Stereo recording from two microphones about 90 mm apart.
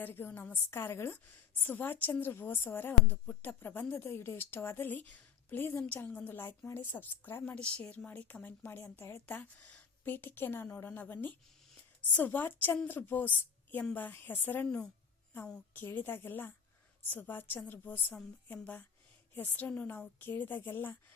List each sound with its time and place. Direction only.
0.0 s a woman's voice: 20° left (ahead or behind)